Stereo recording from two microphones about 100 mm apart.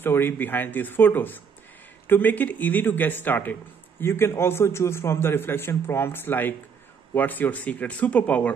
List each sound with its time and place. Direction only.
0.0 s a man's voice: 20° left (ahead or behind)